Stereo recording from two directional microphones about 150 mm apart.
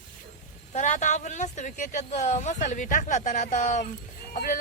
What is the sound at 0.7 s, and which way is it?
Speech, 55° left (ahead or behind).